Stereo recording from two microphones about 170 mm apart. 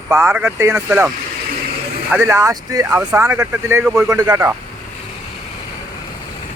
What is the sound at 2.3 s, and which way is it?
Speech, 20° right (ahead or behind).